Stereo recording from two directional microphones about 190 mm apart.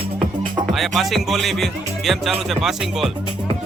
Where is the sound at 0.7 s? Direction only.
Centre (ahead or behind).